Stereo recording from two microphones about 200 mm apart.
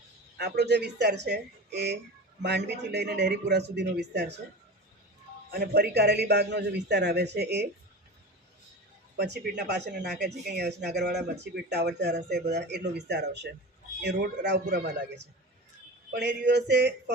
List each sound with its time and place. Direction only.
0.3 s speech: 55° right (ahead or behind)
5.5 s speech: 50° right (ahead or behind)
9.1 s speech: 55° right (ahead or behind)